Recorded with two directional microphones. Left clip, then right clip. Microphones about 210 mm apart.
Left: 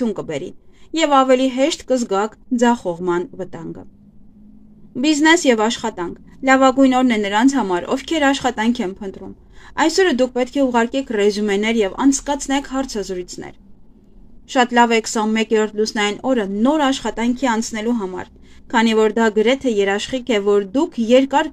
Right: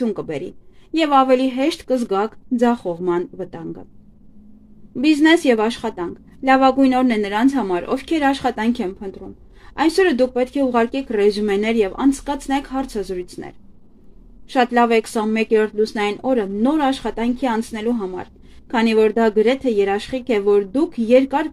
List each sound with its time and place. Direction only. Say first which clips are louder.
0.0 s speech: left 1 dB; 5° left (ahead or behind)
4.9 s speech: even; 5° left (ahead or behind)